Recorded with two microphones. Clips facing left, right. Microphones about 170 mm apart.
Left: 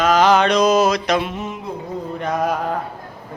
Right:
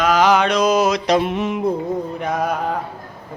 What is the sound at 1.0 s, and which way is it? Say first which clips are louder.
Mantra: right 3 dB; 35° right (ahead or behind).